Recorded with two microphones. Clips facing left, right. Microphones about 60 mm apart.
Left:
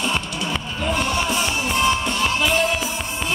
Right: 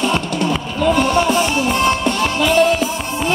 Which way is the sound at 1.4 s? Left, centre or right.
Right.